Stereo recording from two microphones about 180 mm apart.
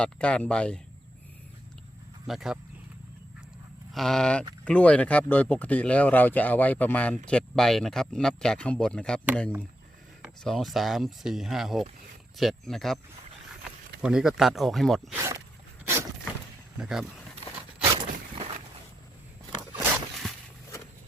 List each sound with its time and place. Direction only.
0.0 s speech: 5° left (ahead or behind)
2.2 s speech: centre (ahead or behind)
3.9 s speech: centre (ahead or behind)
10.4 s speech: centre (ahead or behind)
14.0 s speech: 5° right (ahead or behind)
15.1 s speech: 15° right (ahead or behind)
16.7 s speech: 5° right (ahead or behind)
17.9 s a sound: 30° right (ahead or behind)
20.2 s a sound: 5° left (ahead or behind)